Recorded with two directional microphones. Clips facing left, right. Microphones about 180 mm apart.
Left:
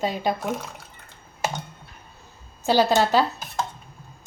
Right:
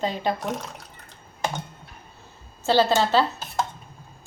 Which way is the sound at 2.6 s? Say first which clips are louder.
Left 1 dB; 15° left (ahead or behind).